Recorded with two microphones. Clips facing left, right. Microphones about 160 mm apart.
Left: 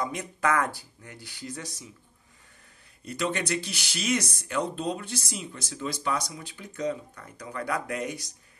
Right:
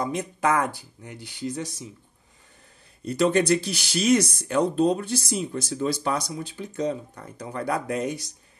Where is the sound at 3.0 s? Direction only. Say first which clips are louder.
Right 9 dB; 35° right (ahead or behind).